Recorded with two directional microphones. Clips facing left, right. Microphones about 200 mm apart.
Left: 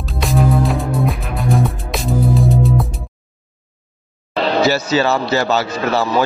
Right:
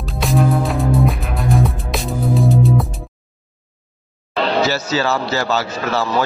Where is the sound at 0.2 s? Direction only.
Centre (ahead or behind).